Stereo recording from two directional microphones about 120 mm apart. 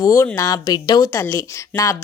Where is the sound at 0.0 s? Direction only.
25° left (ahead or behind).